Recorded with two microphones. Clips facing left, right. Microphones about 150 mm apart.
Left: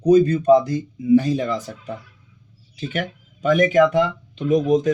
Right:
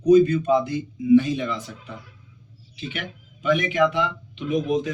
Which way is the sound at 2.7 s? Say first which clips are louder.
Left 6 dB; 45° left (ahead or behind).